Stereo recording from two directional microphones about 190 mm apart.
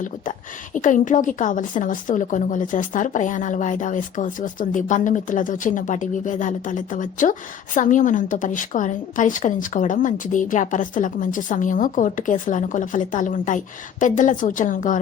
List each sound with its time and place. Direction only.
0.0 s a woman's voice: 40° left (ahead or behind)